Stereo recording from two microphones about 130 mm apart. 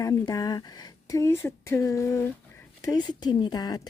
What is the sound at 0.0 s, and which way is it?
A woman's voice, 25° left (ahead or behind).